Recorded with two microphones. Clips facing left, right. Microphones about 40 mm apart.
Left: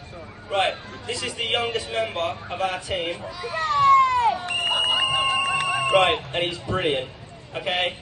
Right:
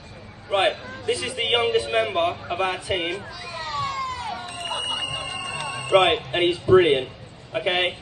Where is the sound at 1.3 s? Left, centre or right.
Right.